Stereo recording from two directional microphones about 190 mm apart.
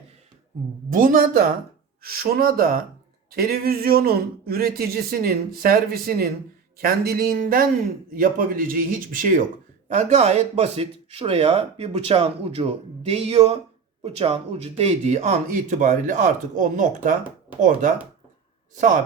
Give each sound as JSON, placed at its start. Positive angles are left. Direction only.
{"t": 0.9, "sound": "speech", "side_deg": -45}
{"t": 9.9, "sound": "speech", "side_deg": -35}